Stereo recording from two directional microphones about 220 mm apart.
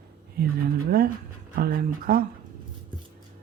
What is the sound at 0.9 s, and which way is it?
Speech, 45° right (ahead or behind).